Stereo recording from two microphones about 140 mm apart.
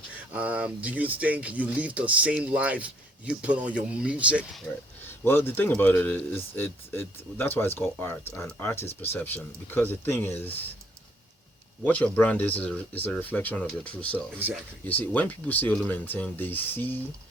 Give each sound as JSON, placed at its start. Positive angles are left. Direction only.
{"t": 0.3, "sound": "speech", "side_deg": -10}
{"t": 5.2, "sound": "speech", "side_deg": 15}
{"t": 11.8, "sound": "speech", "side_deg": 10}